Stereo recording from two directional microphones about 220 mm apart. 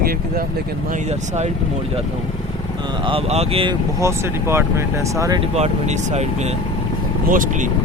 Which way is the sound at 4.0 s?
10° right (ahead or behind).